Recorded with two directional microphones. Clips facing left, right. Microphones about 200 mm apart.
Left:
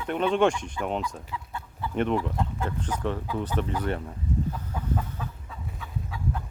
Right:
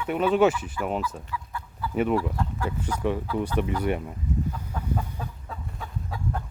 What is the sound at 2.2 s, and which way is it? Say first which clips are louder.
Speech: right 1 dB; 20° left (ahead or behind).